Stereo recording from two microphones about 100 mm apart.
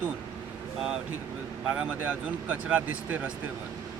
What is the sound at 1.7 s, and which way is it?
Speech, 15° right (ahead or behind).